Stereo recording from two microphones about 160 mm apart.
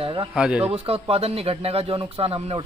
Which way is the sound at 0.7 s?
35° right (ahead or behind).